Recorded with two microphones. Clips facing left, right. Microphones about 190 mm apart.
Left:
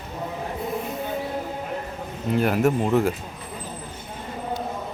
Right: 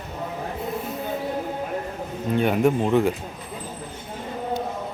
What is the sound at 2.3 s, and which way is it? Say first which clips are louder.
Speech: right 1 dB; centre (ahead or behind).